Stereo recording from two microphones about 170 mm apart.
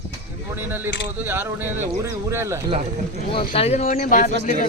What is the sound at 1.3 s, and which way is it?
Speech, 10° right (ahead or behind).